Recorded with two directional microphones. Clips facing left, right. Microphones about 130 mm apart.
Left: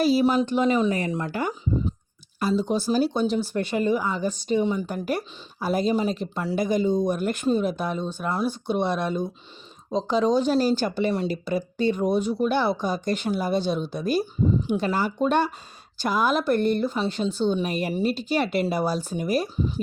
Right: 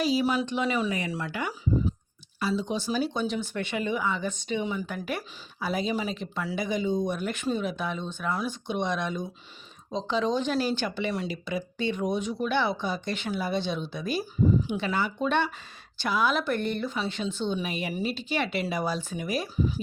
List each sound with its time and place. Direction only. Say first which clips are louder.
0.0 s speech: left 5 dB; 40° left (ahead or behind)